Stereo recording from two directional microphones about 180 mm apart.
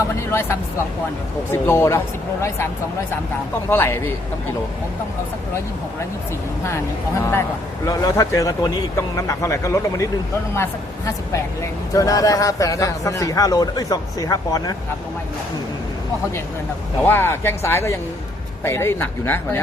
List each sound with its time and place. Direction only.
0.3 s speech: 15° left (ahead or behind)
1.6 s speech: 15° left (ahead or behind)
3.7 s speech: 15° left (ahead or behind)
7.9 s a man's voice: 20° left (ahead or behind)
17.0 s speech: 10° left (ahead or behind)